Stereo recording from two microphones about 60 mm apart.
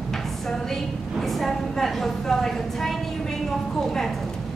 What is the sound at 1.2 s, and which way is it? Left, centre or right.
A woman's voice, centre.